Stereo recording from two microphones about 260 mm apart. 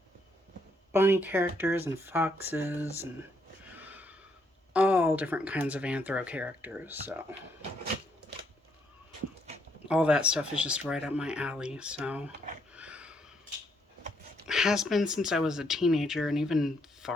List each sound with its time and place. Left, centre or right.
0.9 s speech: centre
3.8 s snort: centre
4.7 s speech: centre
9.9 s speech: centre
12.7 s a sound: centre
14.4 s speech: centre